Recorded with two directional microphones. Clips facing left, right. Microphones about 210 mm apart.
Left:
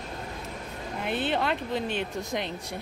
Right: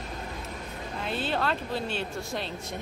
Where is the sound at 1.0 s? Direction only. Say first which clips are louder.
Left 2 dB; 20° left (ahead or behind).